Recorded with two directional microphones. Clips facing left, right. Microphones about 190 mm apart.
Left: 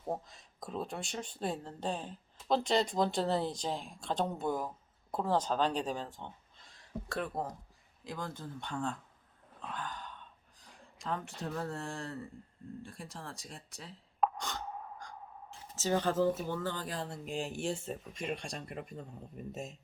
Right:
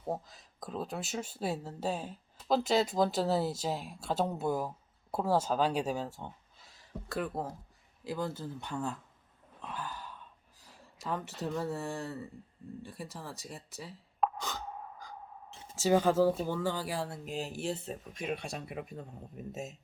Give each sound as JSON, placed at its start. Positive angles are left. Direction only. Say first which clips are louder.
{"t": 0.0, "sound": "speech", "louder": "right 1 dB", "side_deg": 0}
{"t": 9.6, "sound": "a sound", "louder": "right 1 dB", "side_deg": -5}
{"t": 11.4, "sound": "speech", "louder": "right 4 dB", "side_deg": -5}